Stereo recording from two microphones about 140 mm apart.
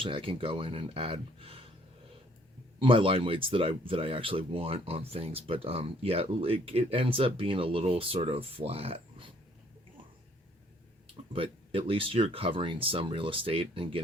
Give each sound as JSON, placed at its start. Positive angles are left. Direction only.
{"t": 0.0, "sound": "speech", "side_deg": -40}
{"t": 2.7, "sound": "speech", "side_deg": -40}
{"t": 11.3, "sound": "speech", "side_deg": -40}